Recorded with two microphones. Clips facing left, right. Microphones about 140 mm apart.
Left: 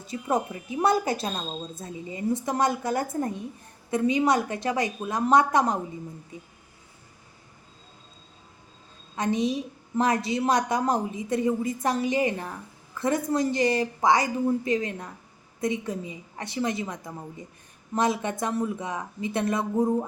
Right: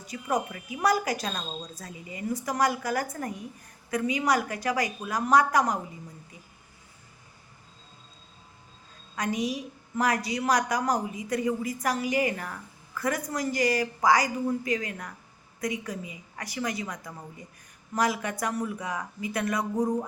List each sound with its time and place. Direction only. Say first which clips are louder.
0.0 s a woman's voice: left 2 dB; 25° left (ahead or behind)
9.1 s a woman's voice: left 4 dB; 25° left (ahead or behind)